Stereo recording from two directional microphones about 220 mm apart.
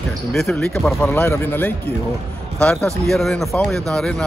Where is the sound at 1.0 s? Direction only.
10° left (ahead or behind).